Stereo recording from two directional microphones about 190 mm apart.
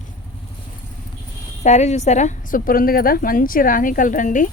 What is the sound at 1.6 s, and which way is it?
A woman's voice, 35° left (ahead or behind).